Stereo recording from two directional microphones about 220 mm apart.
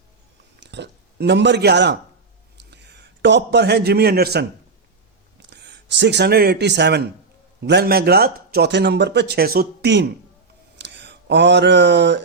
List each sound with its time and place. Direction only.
0.6 s a man's voice: 50° right (ahead or behind)